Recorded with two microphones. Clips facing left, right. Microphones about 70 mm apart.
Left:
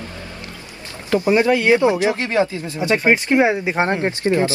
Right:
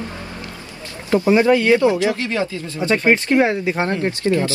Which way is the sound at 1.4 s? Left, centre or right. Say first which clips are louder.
Even; centre.